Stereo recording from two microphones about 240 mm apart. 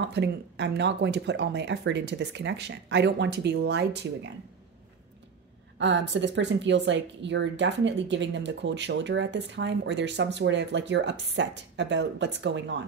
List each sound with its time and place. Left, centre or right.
0.1 s a woman's voice: right
5.8 s a woman's voice: right